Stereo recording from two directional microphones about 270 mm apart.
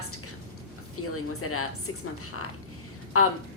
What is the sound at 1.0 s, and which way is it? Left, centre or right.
A woman's voice, left.